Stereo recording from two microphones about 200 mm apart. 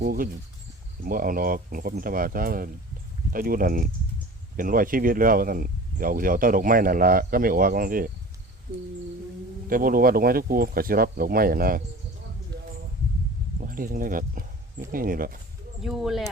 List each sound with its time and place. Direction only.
0.0 s speech: 45° right (ahead or behind)
9.6 s speech: 45° right (ahead or behind)
13.6 s speech: 45° right (ahead or behind)
15.8 s speech: centre (ahead or behind)